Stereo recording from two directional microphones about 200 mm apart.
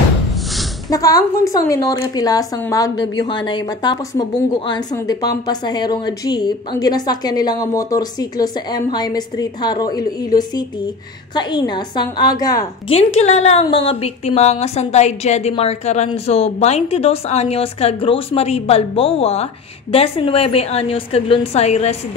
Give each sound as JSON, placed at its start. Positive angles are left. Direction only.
{"t": 0.8, "sound": "a woman's voice", "side_deg": 15}
{"t": 12.9, "sound": "a woman's voice", "side_deg": 30}